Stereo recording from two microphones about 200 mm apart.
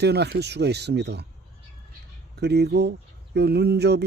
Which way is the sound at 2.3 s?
55° right (ahead or behind).